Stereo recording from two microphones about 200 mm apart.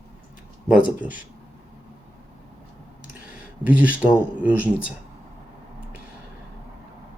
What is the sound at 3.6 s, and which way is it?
Speech, 5° right (ahead or behind).